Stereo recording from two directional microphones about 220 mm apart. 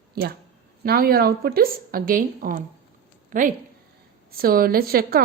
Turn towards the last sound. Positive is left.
turn(degrees=-40)  # may be behind; listen again after turning